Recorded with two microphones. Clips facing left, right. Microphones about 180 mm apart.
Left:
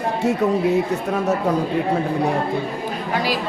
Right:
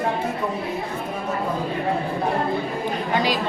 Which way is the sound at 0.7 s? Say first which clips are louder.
Left 8 dB; 80° left.